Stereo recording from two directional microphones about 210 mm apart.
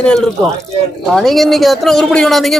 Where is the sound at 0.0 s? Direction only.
5° left (ahead or behind).